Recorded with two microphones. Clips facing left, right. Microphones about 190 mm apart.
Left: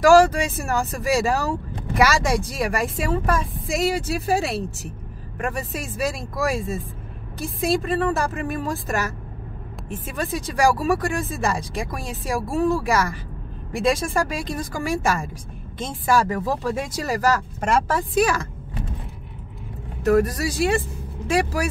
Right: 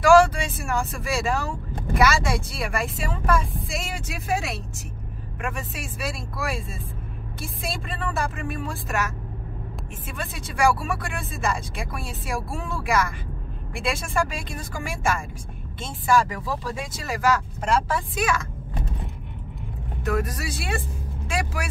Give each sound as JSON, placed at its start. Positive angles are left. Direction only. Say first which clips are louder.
{"t": 0.0, "sound": "speech", "louder": "left 2 dB", "side_deg": 40}
{"t": 20.0, "sound": "speech", "louder": "left 8 dB", "side_deg": 40}